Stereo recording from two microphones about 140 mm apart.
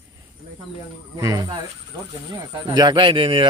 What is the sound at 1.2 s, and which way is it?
Speech, 25° right (ahead or behind).